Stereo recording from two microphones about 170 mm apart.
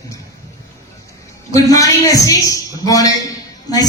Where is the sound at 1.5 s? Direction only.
20° left (ahead or behind).